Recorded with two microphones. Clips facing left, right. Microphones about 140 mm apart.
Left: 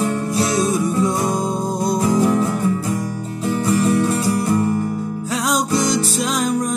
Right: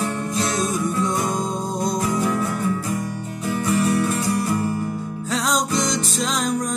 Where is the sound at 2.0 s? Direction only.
35° left (ahead or behind).